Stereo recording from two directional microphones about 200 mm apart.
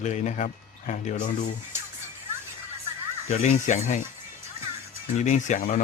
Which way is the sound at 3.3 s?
35° left (ahead or behind).